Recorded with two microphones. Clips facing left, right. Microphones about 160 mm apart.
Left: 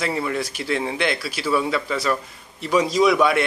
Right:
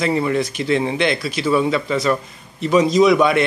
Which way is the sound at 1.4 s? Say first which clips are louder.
Right 4 dB; 15° right (ahead or behind).